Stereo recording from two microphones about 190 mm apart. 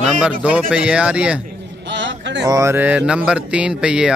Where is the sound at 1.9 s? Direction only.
70° right (ahead or behind).